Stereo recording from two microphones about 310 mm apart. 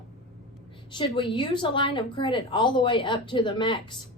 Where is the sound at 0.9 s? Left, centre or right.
Centre.